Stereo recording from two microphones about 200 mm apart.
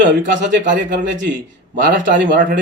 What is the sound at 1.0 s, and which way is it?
A man's voice, 65° right (ahead or behind).